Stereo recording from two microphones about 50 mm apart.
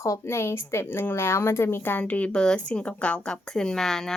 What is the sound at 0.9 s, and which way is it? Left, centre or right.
Speech, left.